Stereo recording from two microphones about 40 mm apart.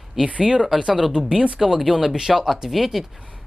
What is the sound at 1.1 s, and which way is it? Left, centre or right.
Speech, right.